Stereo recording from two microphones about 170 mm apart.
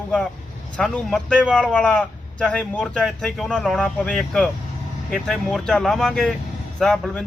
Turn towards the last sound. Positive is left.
turn(degrees=5)  # may be behind; listen again after turning